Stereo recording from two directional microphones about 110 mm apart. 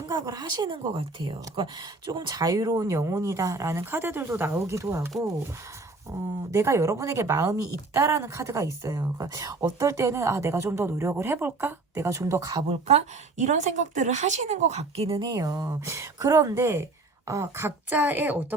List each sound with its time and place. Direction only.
0.1 s speech: 40° right (ahead or behind)
6.5 s speech: 25° right (ahead or behind)
12.6 s speech: 85° right; by 15.2 s 60° right (ahead or behind)
15.2 s speech: 35° right (ahead or behind); by 18.4 s 15° right (ahead or behind)